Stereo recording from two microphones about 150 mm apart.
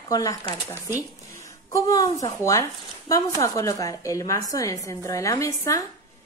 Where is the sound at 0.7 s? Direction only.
15° right (ahead or behind).